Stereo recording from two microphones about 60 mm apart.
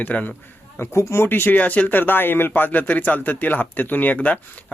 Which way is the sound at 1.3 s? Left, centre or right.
Left.